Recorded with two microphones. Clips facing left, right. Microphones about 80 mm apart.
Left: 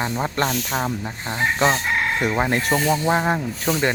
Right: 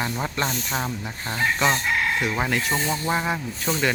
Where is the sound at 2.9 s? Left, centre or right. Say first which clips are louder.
Left 5 dB; left.